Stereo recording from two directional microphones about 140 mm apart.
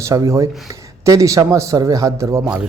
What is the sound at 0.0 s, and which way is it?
Speech, 25° right (ahead or behind).